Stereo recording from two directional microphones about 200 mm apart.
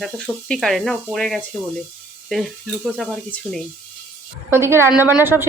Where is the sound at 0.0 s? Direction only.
5° left (ahead or behind).